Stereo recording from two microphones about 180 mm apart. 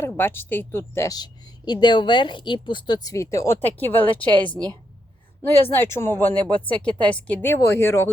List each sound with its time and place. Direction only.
0.0 s a woman's voice: 10° left (ahead or behind)